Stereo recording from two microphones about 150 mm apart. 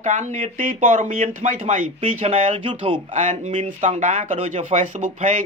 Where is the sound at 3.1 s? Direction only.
55° right (ahead or behind).